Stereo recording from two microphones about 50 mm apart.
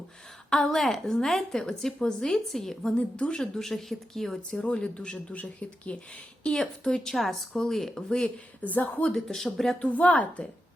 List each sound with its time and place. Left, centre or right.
0.5 s a woman's voice: centre
2.9 s a woman's voice: left
4.6 s speech: left
6.4 s a woman's voice: centre
8.6 s speech: left
9.1 s speech: centre
9.9 s speech: left